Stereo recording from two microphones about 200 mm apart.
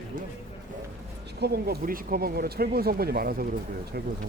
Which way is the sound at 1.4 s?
55° right (ahead or behind).